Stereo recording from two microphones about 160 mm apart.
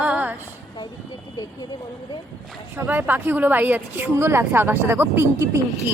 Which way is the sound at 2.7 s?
10° right (ahead or behind).